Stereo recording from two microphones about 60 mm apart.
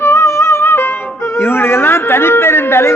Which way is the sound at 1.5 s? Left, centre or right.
Left.